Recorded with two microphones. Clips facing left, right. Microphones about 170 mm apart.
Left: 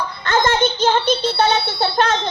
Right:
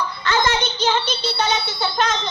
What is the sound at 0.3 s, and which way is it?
A child's voice, 50° left (ahead or behind).